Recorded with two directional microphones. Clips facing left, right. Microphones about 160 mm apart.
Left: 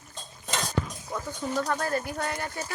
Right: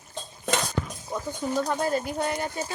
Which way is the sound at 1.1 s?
15° right (ahead or behind).